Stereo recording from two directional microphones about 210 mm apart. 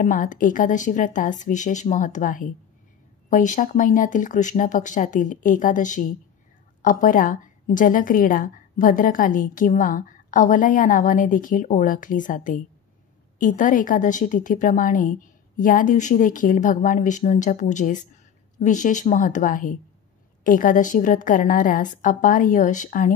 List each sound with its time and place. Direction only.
0.0 s a woman's voice: 40° left (ahead or behind)